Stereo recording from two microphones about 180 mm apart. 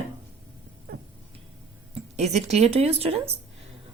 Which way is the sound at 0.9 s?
50° right (ahead or behind).